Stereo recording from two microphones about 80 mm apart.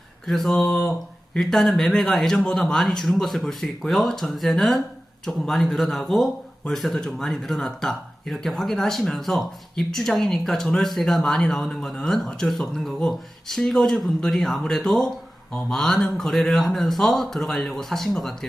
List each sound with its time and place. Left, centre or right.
0.3 s speech: centre